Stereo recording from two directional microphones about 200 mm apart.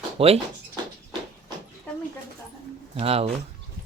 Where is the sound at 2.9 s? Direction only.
30° right (ahead or behind).